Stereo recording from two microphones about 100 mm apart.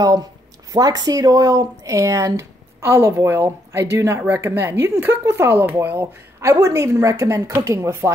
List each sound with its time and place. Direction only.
0.7 s speech: 40° right (ahead or behind)